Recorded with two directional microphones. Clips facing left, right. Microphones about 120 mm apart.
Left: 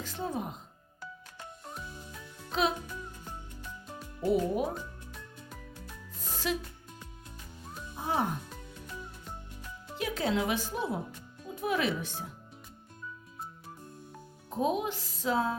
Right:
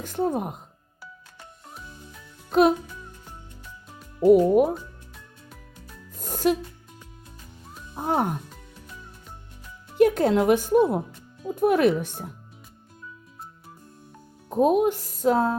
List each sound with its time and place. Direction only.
0.0 s speech: 55° right (ahead or behind)
2.5 s a child's voice: 50° right (ahead or behind)
4.3 s speech: 55° right (ahead or behind)
5.1 s music: centre (ahead or behind)
6.1 s music: 50° right (ahead or behind)
7.9 s speech: 55° right (ahead or behind)
10.0 s speech: 50° right (ahead or behind)
14.5 s speech: 55° right (ahead or behind)